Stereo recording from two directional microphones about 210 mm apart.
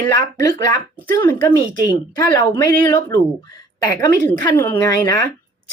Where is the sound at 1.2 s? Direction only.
20° left (ahead or behind).